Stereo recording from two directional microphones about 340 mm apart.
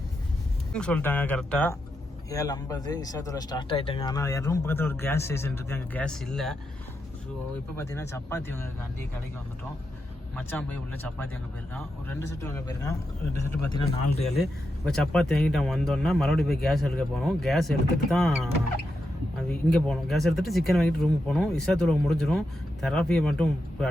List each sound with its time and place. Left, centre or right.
0.7 s speech: centre
7.8 s speech: centre
10.3 s speech: centre
14.3 s speech: centre